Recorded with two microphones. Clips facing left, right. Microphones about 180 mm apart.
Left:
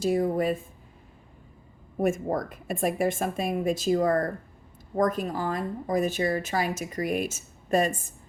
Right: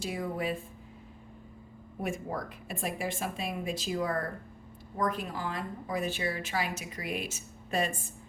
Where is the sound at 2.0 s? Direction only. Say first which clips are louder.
Left 9 dB; 45° left (ahead or behind).